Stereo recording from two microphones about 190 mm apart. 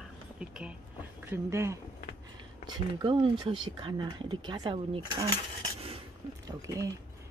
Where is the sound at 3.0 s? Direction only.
25° right (ahead or behind).